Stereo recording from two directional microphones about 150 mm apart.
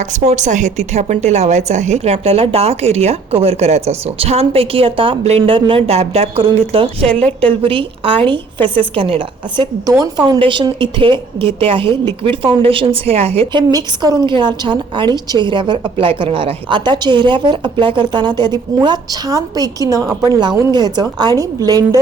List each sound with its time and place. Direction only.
0.0 s a woman's voice: 50° right (ahead or behind)
7.1 s a woman's voice: 10° left (ahead or behind)
7.6 s a woman's voice: 35° right (ahead or behind)